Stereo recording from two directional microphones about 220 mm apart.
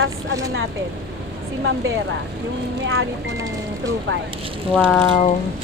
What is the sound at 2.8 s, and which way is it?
Speech, 65° right (ahead or behind).